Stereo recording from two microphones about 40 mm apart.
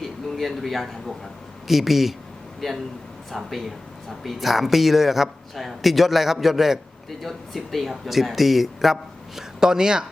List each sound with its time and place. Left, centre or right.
0.3 s a man's voice: centre
2.6 s a man's voice: centre
9.6 s speech: centre